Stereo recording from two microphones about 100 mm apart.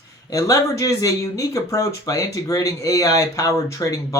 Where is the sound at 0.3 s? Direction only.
35° left (ahead or behind).